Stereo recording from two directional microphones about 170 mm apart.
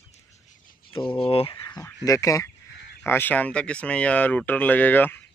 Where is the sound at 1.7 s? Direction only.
20° left (ahead or behind).